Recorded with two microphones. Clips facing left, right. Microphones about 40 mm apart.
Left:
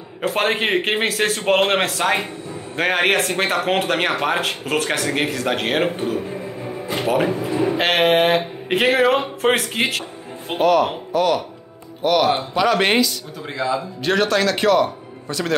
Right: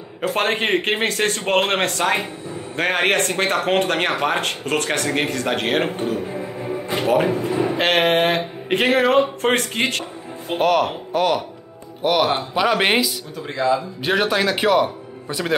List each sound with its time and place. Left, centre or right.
0.3 s speech: centre
10.6 s speech: right
11.1 s speech: right
12.0 s a man's voice: centre
13.6 s speech: centre
14.0 s a man's voice: centre